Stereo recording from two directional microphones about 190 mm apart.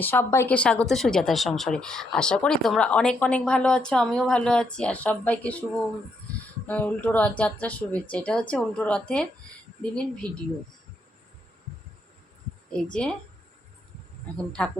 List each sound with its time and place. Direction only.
0.0 s speech: 10° left (ahead or behind)
6.7 s speech: 5° left (ahead or behind)
10.2 s speech: 20° right (ahead or behind)
12.7 s speech: 5° left (ahead or behind)
14.3 s speech: 5° left (ahead or behind)